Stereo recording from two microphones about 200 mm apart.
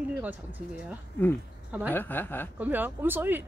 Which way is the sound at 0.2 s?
10° right (ahead or behind).